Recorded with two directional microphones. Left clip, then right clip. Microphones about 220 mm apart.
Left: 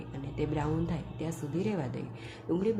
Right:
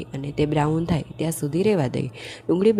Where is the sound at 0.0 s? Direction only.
40° right (ahead or behind).